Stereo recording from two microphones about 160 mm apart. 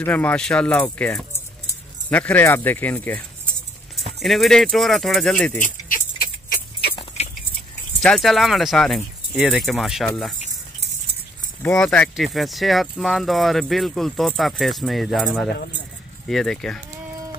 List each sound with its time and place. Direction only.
0.0 s speech: 10° left (ahead or behind)
5.6 s keys jangling: 55° left (ahead or behind)
6.5 s dog: 80° left
8.0 s speech: centre (ahead or behind)
11.7 s speech: 5° left (ahead or behind)
16.3 s speech: centre (ahead or behind)